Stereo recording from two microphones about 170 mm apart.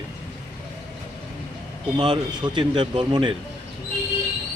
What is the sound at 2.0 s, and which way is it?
Speech, 25° right (ahead or behind).